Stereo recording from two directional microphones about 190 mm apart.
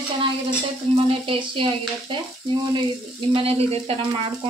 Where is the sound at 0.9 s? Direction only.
25° right (ahead or behind).